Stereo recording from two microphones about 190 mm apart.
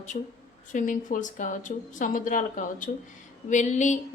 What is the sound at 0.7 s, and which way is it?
A woman's voice, 40° left (ahead or behind).